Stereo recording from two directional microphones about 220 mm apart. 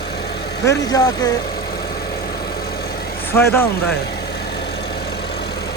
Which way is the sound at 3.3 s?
10° left (ahead or behind).